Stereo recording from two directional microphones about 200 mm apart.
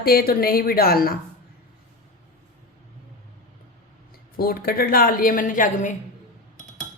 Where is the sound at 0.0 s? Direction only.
50° left (ahead or behind).